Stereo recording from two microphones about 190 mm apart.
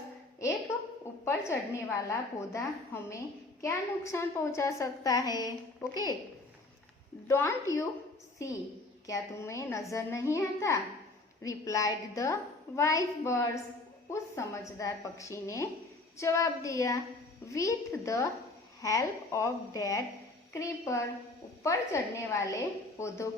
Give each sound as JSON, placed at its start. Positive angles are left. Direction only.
{"t": 1.2, "sound": "a woman's voice", "side_deg": 15}
{"t": 7.3, "sound": "a woman's voice", "side_deg": 15}
{"t": 9.0, "sound": "a woman's voice", "side_deg": 15}